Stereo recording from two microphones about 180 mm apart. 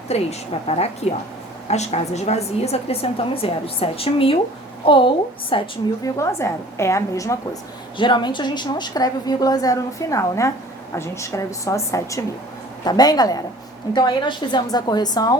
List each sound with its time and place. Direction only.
0.1 s a woman's voice: 35° left (ahead or behind)
6.1 s a woman's voice: 15° left (ahead or behind)